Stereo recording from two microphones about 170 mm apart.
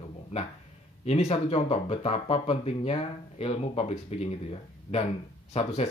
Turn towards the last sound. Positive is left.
turn(degrees=40)  # may be behind; listen again after turning